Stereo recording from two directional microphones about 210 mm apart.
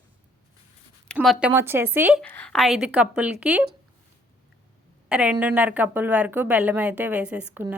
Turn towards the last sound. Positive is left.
turn(degrees=-10)  # may be behind; listen again after turning